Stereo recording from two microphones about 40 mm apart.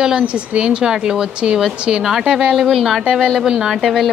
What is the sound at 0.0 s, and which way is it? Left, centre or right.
A woman's voice, centre.